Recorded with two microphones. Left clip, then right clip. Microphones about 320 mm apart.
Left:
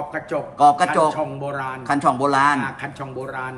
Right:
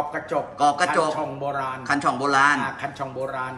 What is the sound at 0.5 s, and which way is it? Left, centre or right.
Speech, centre.